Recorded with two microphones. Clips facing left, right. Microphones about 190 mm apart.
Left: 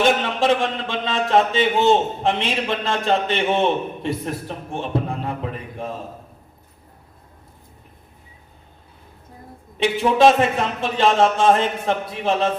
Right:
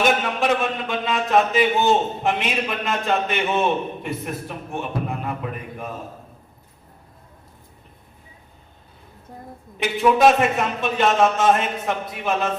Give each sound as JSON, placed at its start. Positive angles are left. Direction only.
{"t": 0.0, "sound": "a man's voice", "side_deg": 30}
{"t": 9.8, "sound": "a man's voice", "side_deg": 30}